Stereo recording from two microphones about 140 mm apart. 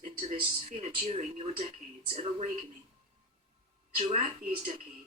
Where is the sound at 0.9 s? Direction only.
45° right (ahead or behind).